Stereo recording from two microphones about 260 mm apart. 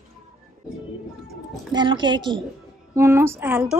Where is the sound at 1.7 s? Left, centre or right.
Centre.